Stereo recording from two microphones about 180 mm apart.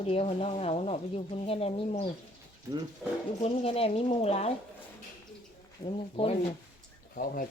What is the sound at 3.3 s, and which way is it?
Speech, 35° left (ahead or behind).